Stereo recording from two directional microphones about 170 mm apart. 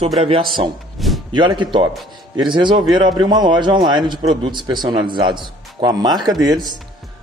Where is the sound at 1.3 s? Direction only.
25° right (ahead or behind).